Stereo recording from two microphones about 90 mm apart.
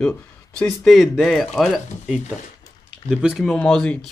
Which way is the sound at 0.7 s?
Centre (ahead or behind).